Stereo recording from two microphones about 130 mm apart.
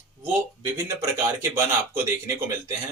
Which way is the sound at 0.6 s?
20° right (ahead or behind).